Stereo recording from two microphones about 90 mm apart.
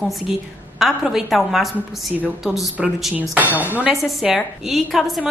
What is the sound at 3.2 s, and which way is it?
Speech, 20° right (ahead or behind).